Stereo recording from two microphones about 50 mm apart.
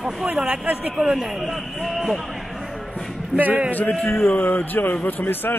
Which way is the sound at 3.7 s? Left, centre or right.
Left.